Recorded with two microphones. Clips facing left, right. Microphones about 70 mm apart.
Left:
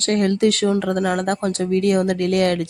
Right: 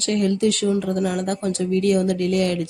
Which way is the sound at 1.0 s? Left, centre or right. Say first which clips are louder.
Left 3 dB; left.